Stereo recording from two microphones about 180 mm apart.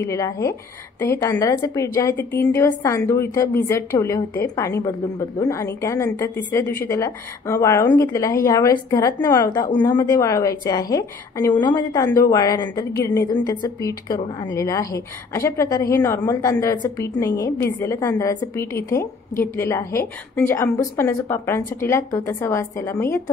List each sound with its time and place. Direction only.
0.0 s a woman's voice: 15° left (ahead or behind)